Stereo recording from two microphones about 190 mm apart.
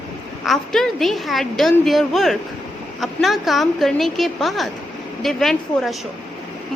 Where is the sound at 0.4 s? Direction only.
Centre (ahead or behind).